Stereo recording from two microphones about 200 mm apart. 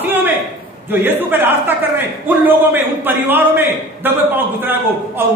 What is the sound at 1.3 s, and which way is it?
A man's voice, 10° right (ahead or behind).